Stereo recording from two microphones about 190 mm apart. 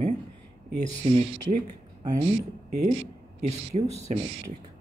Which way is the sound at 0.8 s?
30° right (ahead or behind).